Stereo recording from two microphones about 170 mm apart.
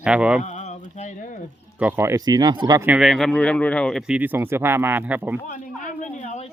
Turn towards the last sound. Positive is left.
turn(degrees=40)  # may be behind; listen again after turning